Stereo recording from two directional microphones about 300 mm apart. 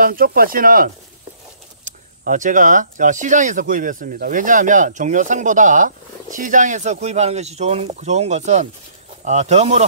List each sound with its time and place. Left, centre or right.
0.0 s speech: right